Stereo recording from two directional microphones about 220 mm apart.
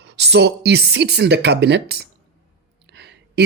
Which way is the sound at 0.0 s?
50° right (ahead or behind).